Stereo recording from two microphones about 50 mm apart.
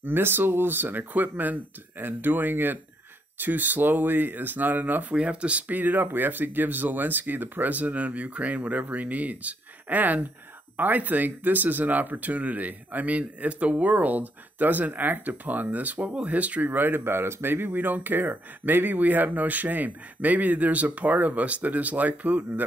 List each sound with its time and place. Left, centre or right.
0.0 s speech: right
5.1 s speech: right
16.6 s speech: right